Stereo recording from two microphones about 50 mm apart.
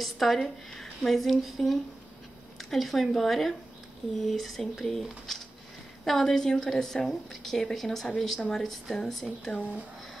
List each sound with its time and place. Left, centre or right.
0.0 s a woman's voice: centre
5.3 s a sound: centre
6.0 s a woman's voice: centre
9.5 s speech: left